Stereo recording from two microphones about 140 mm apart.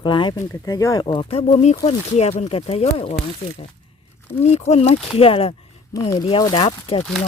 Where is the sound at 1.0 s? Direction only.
35° left (ahead or behind).